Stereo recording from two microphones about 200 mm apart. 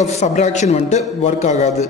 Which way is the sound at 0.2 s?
35° left (ahead or behind).